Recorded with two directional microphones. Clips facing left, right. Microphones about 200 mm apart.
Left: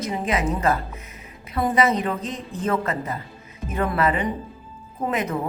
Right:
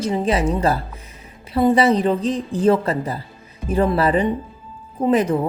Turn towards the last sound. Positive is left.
turn(degrees=-30)  # may be behind; listen again after turning